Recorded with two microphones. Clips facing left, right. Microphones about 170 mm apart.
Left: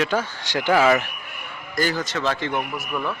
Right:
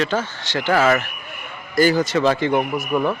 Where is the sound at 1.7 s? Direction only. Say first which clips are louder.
Right 8 dB; 10° right (ahead or behind).